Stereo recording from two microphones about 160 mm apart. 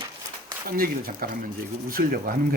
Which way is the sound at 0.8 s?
65° right (ahead or behind).